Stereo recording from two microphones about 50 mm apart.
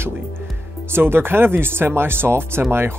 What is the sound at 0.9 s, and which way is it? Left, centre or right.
Speech, right.